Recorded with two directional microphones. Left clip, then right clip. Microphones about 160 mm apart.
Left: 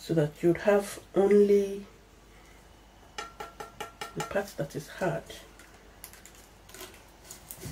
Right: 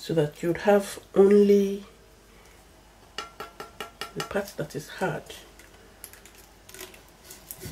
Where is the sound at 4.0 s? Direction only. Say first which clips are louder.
Right 1 dB; 40° right (ahead or behind).